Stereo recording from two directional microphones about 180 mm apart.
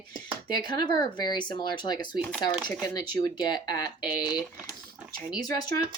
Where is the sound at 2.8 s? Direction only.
20° left (ahead or behind).